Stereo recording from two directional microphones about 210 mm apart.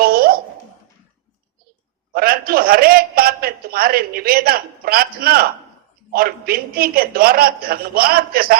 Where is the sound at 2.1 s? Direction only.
45° right (ahead or behind).